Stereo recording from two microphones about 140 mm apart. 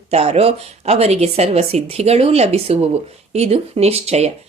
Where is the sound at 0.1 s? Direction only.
45° right (ahead or behind).